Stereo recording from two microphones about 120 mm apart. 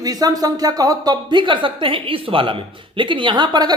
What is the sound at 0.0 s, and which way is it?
A man's voice, 30° right (ahead or behind).